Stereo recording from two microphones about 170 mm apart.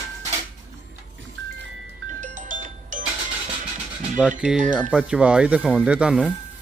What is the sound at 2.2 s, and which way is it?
Music, 50° right (ahead or behind).